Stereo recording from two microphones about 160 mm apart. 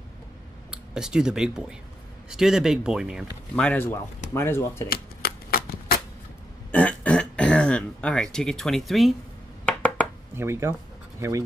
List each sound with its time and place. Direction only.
0.7 s speech: 5° right (ahead or behind)
3.6 s speech: 10° left (ahead or behind)
4.8 s shuffling cards: 70° left (ahead or behind)
6.7 s throat clearing: 10° left (ahead or behind)
9.7 s a sound: 10° left (ahead or behind)
10.3 s speech: 15° right (ahead or behind)